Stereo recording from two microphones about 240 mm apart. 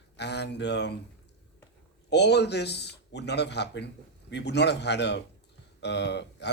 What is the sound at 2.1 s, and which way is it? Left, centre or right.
Speech, left.